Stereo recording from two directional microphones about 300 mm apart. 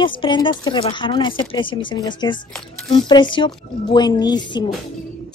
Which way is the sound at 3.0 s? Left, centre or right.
Centre.